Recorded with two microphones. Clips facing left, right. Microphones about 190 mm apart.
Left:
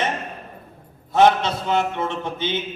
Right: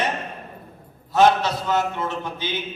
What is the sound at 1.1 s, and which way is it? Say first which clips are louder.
Speech: left 1 dB; 25° left (ahead or behind).